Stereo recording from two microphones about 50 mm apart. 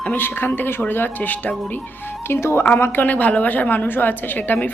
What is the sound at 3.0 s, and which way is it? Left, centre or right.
A woman's voice, left.